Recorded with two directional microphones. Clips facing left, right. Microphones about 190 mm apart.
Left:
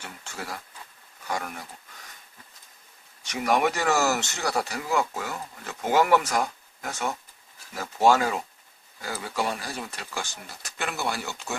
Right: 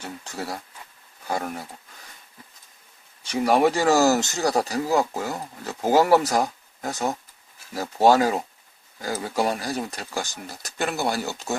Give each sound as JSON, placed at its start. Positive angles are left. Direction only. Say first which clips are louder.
{"t": 0.0, "sound": "speech", "louder": "right 5 dB", "side_deg": -35}
{"t": 3.2, "sound": "speech", "louder": "right 5 dB", "side_deg": -30}